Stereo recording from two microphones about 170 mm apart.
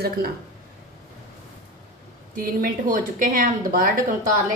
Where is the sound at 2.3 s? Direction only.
55° right (ahead or behind).